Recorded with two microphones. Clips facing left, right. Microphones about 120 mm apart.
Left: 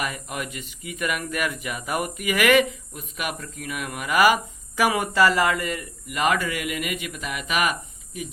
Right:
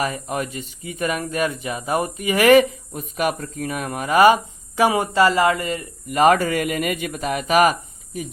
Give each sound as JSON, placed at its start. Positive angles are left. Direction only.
{"t": 0.0, "sound": "speech", "side_deg": -35}
{"t": 6.1, "sound": "speech", "side_deg": -40}